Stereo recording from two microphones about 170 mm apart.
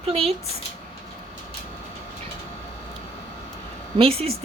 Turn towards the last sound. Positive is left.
turn(degrees=-35)  # may be behind; listen again after turning